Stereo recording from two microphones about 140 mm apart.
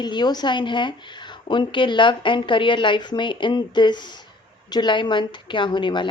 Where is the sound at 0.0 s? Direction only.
30° left (ahead or behind).